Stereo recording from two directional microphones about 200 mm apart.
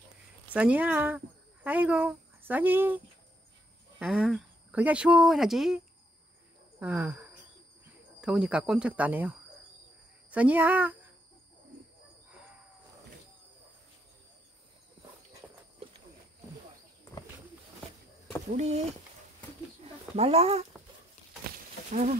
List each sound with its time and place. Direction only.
0.5 s speech: 5° right (ahead or behind)
4.0 s speech: 5° right (ahead or behind)
6.8 s a woman's voice: 10° right (ahead or behind)
10.3 s a woman's voice: 5° right (ahead or behind)
15.8 s clip-clop: 30° right (ahead or behind)
18.5 s speech: 35° right (ahead or behind)
19.8 s a sound: 30° right (ahead or behind)
21.9 s speech: 35° right (ahead or behind)